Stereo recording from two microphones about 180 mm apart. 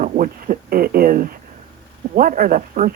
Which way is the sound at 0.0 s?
50° right (ahead or behind).